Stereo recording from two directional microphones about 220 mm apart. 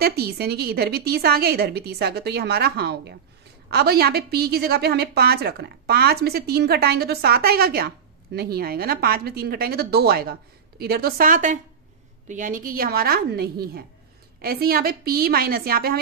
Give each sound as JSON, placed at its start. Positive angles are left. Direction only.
{"t": 0.0, "sound": "a woman's voice", "side_deg": -45}